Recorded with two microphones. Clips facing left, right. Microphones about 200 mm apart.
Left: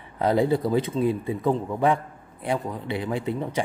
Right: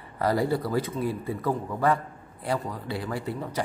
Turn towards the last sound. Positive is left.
turn(degrees=25)  # may be behind; listen again after turning